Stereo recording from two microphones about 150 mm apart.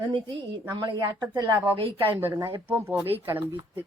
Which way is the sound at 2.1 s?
15° right (ahead or behind).